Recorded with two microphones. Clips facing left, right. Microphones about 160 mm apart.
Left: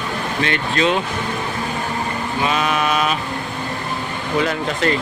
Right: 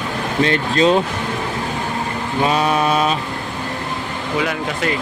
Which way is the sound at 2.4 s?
35° right (ahead or behind).